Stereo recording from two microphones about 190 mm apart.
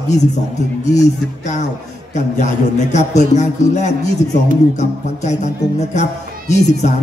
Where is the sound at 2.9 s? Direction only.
40° left (ahead or behind).